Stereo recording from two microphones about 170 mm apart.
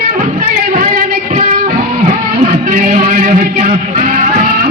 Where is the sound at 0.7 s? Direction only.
45° right (ahead or behind).